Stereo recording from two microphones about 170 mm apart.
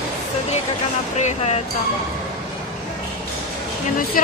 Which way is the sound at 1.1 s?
40° left (ahead or behind).